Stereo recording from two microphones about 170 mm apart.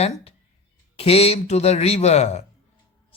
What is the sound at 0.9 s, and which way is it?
Speech, 35° left (ahead or behind).